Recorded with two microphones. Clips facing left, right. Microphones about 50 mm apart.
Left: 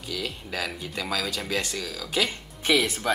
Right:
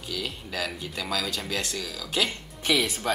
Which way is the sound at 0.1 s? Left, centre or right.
Centre.